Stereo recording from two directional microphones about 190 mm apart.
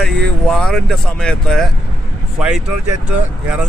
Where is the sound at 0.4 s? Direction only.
5° left (ahead or behind).